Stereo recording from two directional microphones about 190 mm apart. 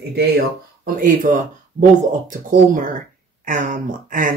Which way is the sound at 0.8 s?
45° right (ahead or behind).